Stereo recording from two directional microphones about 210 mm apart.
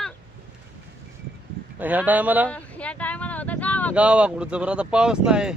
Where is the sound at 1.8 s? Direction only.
10° right (ahead or behind).